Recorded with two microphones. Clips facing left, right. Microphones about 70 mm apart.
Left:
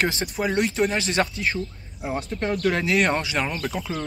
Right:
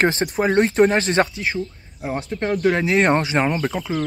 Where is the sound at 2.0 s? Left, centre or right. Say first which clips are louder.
Right 3 dB; right.